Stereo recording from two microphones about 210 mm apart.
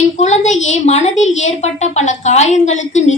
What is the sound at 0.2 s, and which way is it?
A woman's voice, 35° left (ahead or behind).